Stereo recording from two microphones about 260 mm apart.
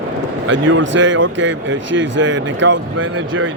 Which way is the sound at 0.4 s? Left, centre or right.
Right.